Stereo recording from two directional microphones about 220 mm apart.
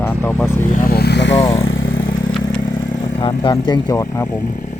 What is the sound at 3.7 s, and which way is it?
Speech, 20° left (ahead or behind).